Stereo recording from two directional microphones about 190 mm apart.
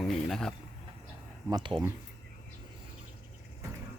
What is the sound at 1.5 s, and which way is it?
Speech, 25° right (ahead or behind).